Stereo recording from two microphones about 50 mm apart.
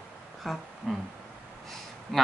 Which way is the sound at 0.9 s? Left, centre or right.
Centre.